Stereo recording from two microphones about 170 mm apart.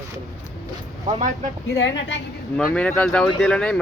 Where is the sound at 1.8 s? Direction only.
90° left.